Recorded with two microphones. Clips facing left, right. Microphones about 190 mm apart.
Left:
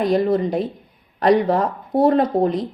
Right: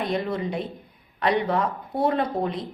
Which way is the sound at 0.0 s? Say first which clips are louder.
Left 9 dB; 40° left (ahead or behind).